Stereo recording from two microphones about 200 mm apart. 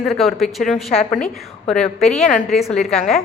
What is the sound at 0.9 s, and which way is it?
Speech, 35° left (ahead or behind).